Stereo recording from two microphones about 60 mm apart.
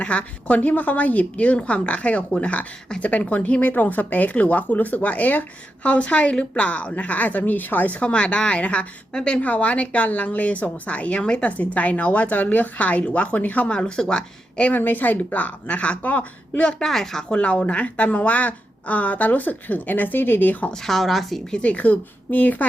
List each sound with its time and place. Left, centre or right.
0.0 s a woman's voice: left
7.9 s a woman's voice: centre
13.7 s speech: centre
14.8 s a woman's voice: left
16.6 s a woman's voice: centre; by 20.7 s left
20.8 s a woman's voice: centre
21.5 s a woman's voice: left